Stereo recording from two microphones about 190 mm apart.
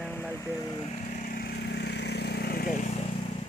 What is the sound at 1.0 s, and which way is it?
Vehicle, 45° left (ahead or behind).